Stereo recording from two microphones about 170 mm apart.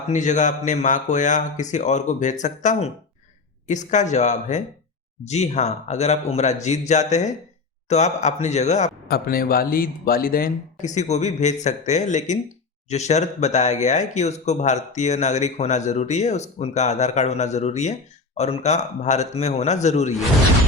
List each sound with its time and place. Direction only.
0.1 s a man's voice: 45° left (ahead or behind)
9.0 s a man's voice: 60° left (ahead or behind); by 20.1 s 40° left (ahead or behind)